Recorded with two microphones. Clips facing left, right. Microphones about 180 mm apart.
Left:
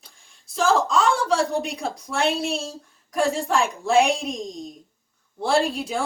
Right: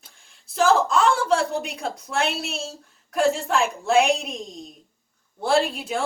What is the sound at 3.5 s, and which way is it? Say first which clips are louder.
A woman's voice: even; centre (ahead or behind).